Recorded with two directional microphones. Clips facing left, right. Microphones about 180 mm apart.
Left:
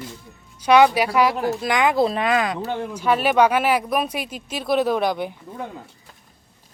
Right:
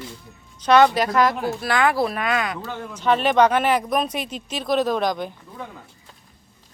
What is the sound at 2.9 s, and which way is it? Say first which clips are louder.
Speech: right 1 dB; 10° left (ahead or behind).